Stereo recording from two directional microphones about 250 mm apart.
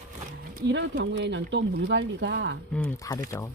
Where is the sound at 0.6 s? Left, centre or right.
Right.